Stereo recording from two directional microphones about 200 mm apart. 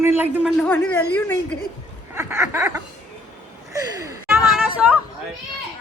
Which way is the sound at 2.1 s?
10° right (ahead or behind).